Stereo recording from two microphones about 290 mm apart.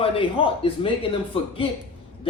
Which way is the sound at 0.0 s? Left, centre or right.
Centre.